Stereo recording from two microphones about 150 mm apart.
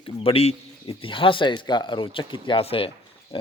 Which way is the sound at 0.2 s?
40° left (ahead or behind).